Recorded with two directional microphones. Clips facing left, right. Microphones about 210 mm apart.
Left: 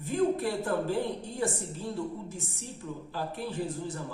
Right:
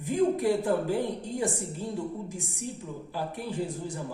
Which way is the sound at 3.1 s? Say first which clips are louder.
Right 2 dB; 15° right (ahead or behind).